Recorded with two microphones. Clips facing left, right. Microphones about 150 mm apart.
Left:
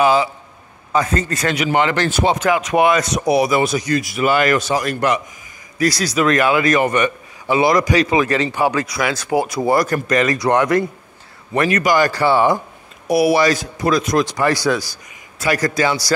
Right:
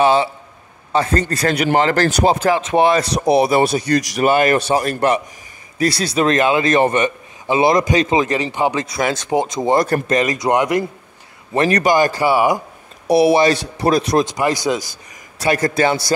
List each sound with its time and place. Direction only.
0.0 s a man's voice: 30° right (ahead or behind)
11.5 s a man's voice: 30° right (ahead or behind); by 12.5 s 10° right (ahead or behind)
13.1 s a man's voice: 25° right (ahead or behind)
15.3 s a man's voice: 30° right (ahead or behind)